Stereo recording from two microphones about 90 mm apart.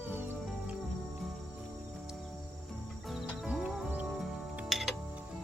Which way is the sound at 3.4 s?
10° right (ahead or behind).